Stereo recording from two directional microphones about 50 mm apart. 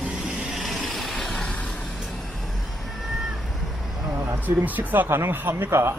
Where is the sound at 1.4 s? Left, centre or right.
Left.